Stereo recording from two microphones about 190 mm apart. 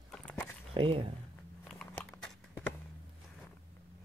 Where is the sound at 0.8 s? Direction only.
30° right (ahead or behind).